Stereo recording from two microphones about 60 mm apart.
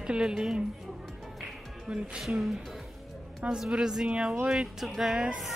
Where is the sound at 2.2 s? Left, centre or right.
Centre.